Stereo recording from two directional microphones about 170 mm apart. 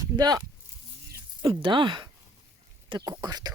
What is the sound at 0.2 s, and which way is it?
Speech, 25° right (ahead or behind).